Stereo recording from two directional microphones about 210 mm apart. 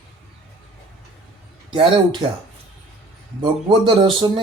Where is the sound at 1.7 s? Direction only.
25° right (ahead or behind).